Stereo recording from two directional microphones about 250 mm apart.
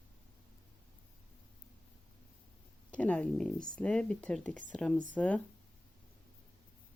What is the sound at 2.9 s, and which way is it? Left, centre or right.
Speech, centre.